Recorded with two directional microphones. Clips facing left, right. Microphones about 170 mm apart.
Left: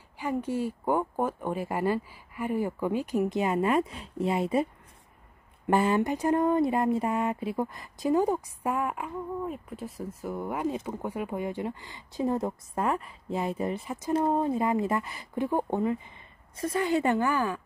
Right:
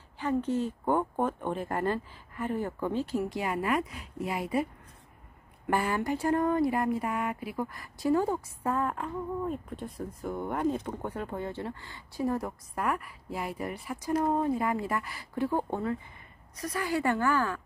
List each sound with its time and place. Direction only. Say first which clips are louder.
0.2 s a woman's voice: right 1 dB; 10° left (ahead or behind); by 4.6 s 25° left (ahead or behind)
5.7 s speech: left 4 dB; 20° left (ahead or behind)